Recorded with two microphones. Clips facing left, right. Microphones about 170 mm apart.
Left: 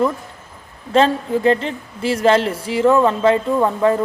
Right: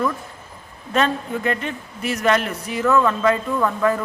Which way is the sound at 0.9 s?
30° left (ahead or behind).